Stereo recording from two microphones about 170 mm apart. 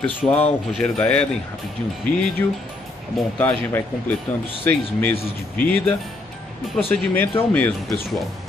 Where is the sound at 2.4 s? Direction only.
15° left (ahead or behind).